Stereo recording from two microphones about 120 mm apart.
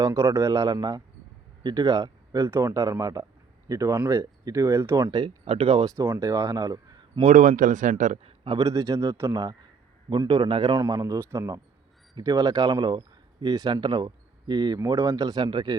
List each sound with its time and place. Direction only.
0.0 s speech: 25° right (ahead or behind)
5.5 s speech: 50° right (ahead or behind)
6.1 s speech: 25° right (ahead or behind)
7.2 s speech: 80° right
8.4 s speech: 30° right (ahead or behind)
10.8 s speech: 30° right (ahead or behind)